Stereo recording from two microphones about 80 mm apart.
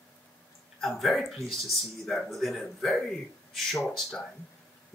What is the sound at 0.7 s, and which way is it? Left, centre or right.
Speech, centre.